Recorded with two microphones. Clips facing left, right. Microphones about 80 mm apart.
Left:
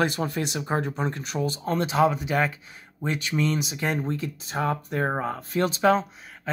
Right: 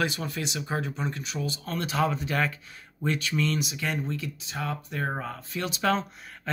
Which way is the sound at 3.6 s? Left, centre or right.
Left.